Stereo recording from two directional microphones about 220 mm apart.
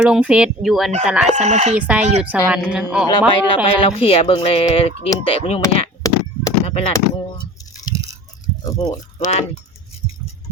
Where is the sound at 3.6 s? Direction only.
25° left (ahead or behind).